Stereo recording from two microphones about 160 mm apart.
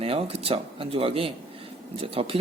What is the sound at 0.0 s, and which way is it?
Speech, 35° right (ahead or behind).